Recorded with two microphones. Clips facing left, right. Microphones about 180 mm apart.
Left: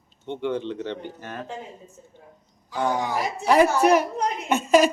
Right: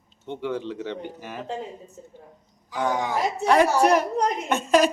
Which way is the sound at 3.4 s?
5° left (ahead or behind).